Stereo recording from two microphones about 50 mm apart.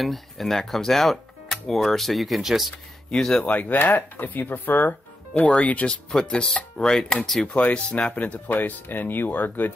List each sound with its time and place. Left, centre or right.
0.0 s speech: centre
3.1 s speech: centre
3.4 s speech: left
5.5 s speech: left; by 7.5 s centre
7.5 s speech: left
8.5 s speech: left